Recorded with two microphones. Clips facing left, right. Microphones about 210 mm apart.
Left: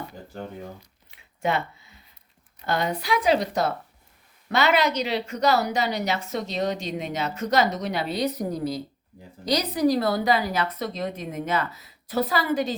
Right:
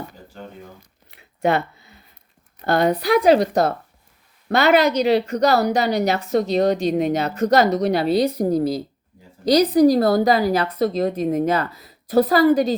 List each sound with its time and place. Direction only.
1.5 s a woman's voice: 60° right (ahead or behind)
3.3 s a woman's voice: 40° right (ahead or behind)
4.4 s speech: 55° right (ahead or behind)
4.8 s a woman's voice: 35° right (ahead or behind)
5.0 s a woman's voice: 55° right (ahead or behind)
5.9 s a woman's voice: 35° right (ahead or behind)
7.2 s a woman's voice: 60° right (ahead or behind)
7.7 s a woman's voice: 35° right (ahead or behind)